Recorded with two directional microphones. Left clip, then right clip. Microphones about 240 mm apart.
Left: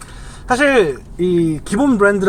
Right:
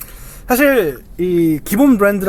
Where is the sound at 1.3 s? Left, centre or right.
Right.